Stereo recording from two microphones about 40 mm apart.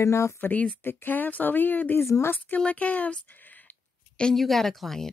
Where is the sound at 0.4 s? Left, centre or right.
Left.